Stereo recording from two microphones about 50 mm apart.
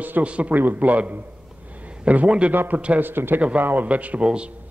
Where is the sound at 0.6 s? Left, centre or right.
Right.